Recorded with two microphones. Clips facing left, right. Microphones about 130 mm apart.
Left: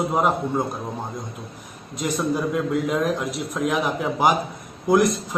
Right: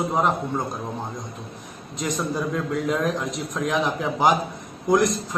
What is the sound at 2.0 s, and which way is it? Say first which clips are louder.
A man's voice: left 3 dB; 5° left (ahead or behind).